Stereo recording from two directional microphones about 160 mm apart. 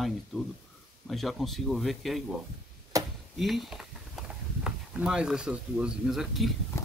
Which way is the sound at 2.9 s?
20° right (ahead or behind).